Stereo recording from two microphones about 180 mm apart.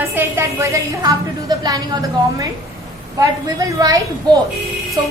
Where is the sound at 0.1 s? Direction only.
15° right (ahead or behind).